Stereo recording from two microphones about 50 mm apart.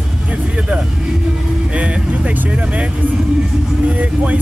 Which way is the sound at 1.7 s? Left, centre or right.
Right.